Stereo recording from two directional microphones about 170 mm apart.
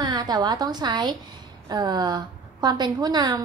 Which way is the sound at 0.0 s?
25° right (ahead or behind).